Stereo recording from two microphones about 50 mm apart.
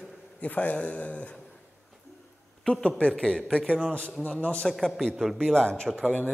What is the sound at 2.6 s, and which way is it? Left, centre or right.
Speech, centre.